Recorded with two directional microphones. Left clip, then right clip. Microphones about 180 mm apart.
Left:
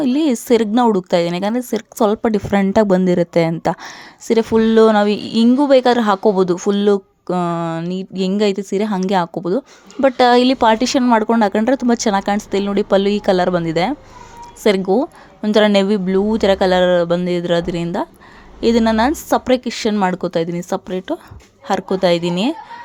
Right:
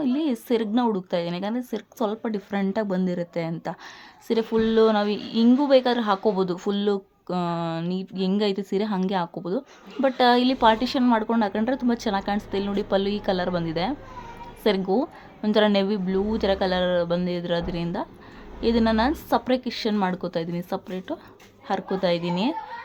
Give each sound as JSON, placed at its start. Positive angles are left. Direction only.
{"t": 0.0, "sound": "a woman's voice", "side_deg": 45}
{"t": 7.3, "sound": "speech", "side_deg": 20}
{"t": 7.7, "sound": "a woman's voice", "side_deg": 30}